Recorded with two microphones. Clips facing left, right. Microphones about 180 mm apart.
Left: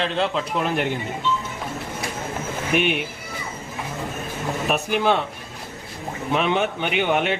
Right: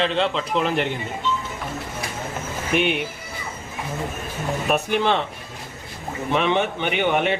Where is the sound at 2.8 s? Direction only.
55° left (ahead or behind).